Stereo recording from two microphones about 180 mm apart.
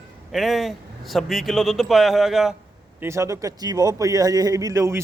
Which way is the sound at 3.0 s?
15° right (ahead or behind).